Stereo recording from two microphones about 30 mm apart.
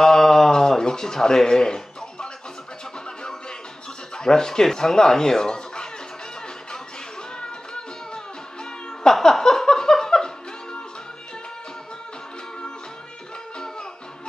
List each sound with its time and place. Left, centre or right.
0.0 s a sound: centre
4.2 s speech: centre
7.3 s music: left
9.0 s music: centre